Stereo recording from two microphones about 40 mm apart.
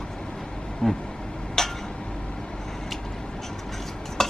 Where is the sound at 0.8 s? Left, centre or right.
Left.